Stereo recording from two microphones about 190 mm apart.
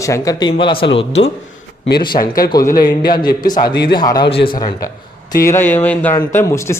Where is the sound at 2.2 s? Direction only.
50° left (ahead or behind).